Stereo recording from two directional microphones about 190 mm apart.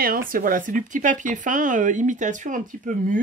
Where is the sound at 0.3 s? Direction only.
45° right (ahead or behind).